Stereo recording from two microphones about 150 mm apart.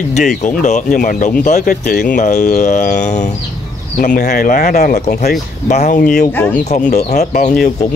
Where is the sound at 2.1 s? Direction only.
50° left (ahead or behind); by 5.2 s 90° left.